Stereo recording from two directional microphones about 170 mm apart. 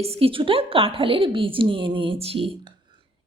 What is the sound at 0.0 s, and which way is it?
A woman's voice, 35° right (ahead or behind).